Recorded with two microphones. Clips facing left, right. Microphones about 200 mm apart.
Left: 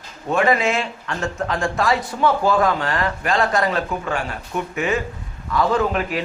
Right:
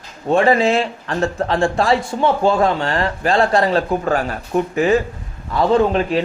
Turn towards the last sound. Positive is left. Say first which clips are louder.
# right 5 dB
turn(degrees=-30)  # may be behind; listen again after turning